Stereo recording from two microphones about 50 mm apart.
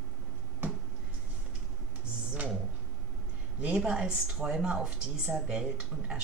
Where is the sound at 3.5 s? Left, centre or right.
Right.